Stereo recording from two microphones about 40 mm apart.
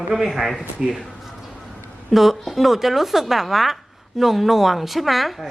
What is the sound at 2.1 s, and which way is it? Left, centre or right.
Speech, centre.